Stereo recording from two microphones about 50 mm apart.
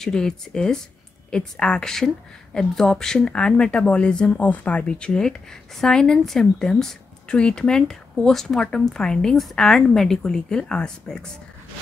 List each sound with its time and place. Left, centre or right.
0.0 s speech: centre
4.4 s speech: left